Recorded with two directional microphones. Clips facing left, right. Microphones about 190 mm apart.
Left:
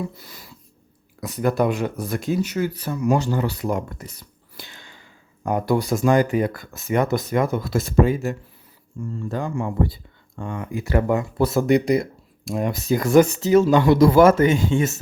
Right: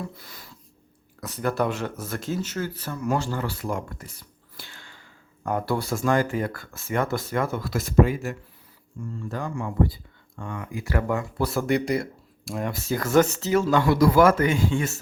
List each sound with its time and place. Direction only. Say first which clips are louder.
1.2 s speech: left 5 dB; 15° left (ahead or behind)